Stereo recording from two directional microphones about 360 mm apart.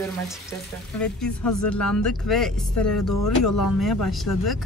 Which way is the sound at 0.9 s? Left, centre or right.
Centre.